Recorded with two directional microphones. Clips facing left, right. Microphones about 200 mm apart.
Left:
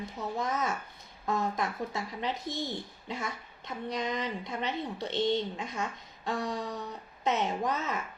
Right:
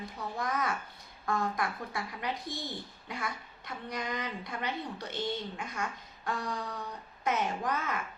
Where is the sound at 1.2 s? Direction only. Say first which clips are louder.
Left 1 dB; 20° left (ahead or behind).